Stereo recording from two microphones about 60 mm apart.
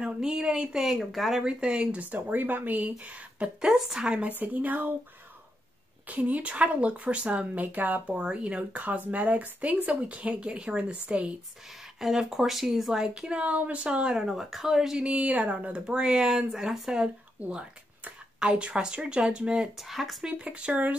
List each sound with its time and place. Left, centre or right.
0.0 s speech: centre
1.4 s speech: centre
3.6 s speech: centre
4.3 s a woman's voice: right
6.0 s speech: right
8.2 s speech: centre
12.0 s speech: centre
14.1 s speech: centre
17.0 s speech: centre
19.8 s speech: centre
20.2 s speech: centre